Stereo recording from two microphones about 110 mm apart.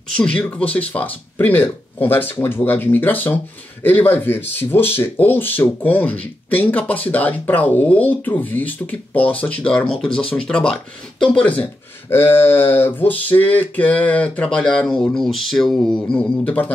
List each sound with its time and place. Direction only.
0.2 s speech: 10° left (ahead or behind)